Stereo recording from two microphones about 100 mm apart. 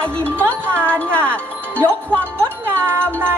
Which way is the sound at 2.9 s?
25° right (ahead or behind).